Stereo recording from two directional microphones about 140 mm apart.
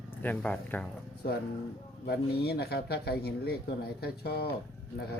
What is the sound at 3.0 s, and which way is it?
Speech, 90° left.